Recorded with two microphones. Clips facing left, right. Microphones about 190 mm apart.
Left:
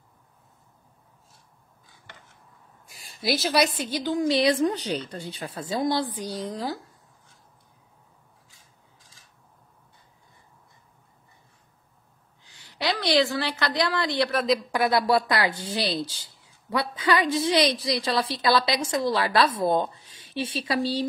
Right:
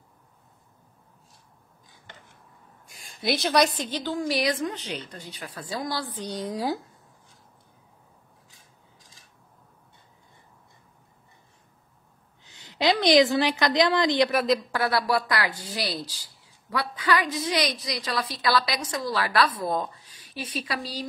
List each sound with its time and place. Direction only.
2.9 s a woman's voice: centre (ahead or behind); by 6.2 s 20° left (ahead or behind)
6.2 s speech: centre (ahead or behind)
12.4 s a woman's voice: 20° right (ahead or behind)
14.7 s a woman's voice: 20° left (ahead or behind)